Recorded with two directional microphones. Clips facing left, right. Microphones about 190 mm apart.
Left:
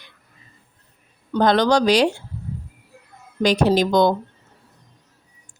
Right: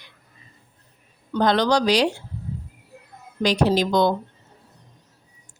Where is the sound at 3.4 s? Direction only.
50° left (ahead or behind).